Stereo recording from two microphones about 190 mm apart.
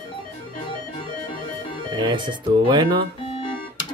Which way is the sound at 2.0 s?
25° right (ahead or behind).